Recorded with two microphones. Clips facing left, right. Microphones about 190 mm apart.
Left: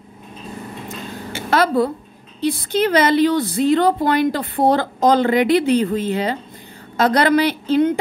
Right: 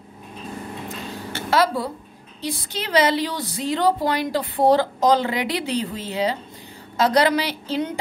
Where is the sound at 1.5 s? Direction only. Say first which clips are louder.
Left 4 dB; 55° left (ahead or behind).